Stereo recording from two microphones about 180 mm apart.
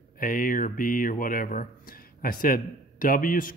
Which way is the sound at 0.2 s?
50° left (ahead or behind).